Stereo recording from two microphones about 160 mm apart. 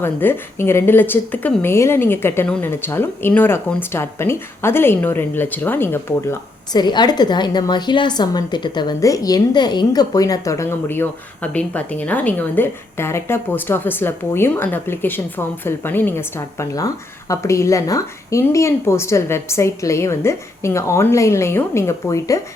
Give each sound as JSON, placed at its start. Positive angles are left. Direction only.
{"t": 0.0, "sound": "a woman's voice", "side_deg": 15}
{"t": 6.7, "sound": "a woman's voice", "side_deg": 25}